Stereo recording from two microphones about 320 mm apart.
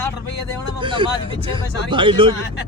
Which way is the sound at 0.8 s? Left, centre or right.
Centre.